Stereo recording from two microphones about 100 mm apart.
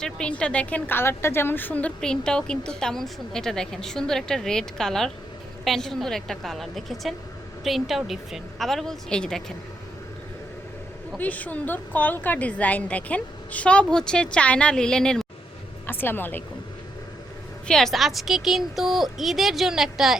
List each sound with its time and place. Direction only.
0.0 s a woman's voice: 10° left (ahead or behind)
11.2 s a woman's voice: 15° left (ahead or behind)
15.9 s speech: 20° left (ahead or behind)
17.7 s a woman's voice: 5° left (ahead or behind)